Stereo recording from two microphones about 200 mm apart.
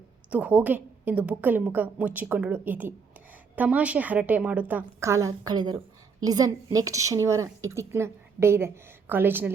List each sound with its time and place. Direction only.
0.3 s speech: 10° right (ahead or behind)